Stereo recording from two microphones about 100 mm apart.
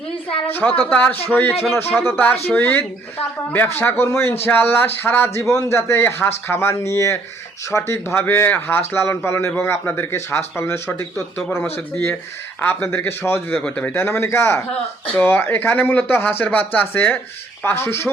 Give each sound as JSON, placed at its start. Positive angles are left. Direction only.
{"t": 0.5, "sound": "a man's voice", "side_deg": 15}
{"t": 13.6, "sound": "speech", "side_deg": 10}